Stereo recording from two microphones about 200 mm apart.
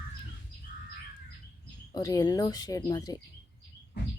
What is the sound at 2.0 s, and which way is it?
Speech, 15° left (ahead or behind).